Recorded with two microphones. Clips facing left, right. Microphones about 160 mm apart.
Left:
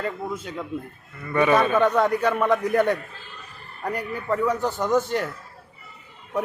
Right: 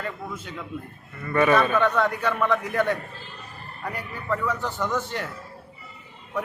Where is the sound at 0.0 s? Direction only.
30° left (ahead or behind).